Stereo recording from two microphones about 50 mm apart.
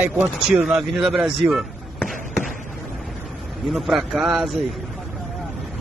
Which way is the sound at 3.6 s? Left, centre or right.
Centre.